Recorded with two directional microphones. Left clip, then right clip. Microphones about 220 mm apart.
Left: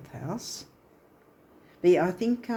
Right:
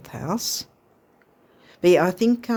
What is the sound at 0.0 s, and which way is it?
Speech, 50° right (ahead or behind).